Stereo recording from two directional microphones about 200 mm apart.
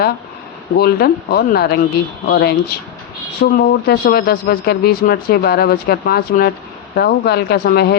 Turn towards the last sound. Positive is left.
turn(degrees=55)  # may be behind; listen again after turning